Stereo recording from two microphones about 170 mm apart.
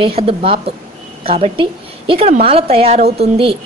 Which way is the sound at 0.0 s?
35° right (ahead or behind).